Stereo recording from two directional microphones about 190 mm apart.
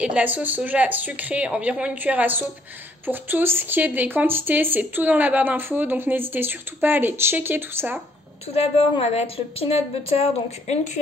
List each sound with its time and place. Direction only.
0.0 s speech: 5° right (ahead or behind)
8.5 s a woman's voice: 30° left (ahead or behind)